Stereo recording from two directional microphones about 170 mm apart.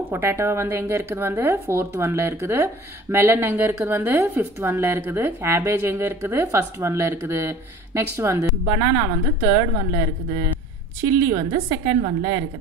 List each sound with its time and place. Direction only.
0.1 s speech: 15° right (ahead or behind)
11.0 s a woman's voice: 20° right (ahead or behind)